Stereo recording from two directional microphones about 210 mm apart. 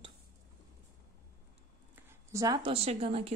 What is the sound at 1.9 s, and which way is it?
Speech, 10° right (ahead or behind).